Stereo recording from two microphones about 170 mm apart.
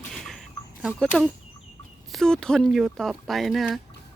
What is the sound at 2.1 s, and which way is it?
Speech, 5° left (ahead or behind).